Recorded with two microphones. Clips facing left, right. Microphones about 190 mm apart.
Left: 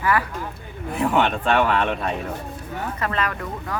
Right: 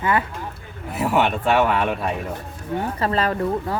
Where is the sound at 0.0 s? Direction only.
25° right (ahead or behind).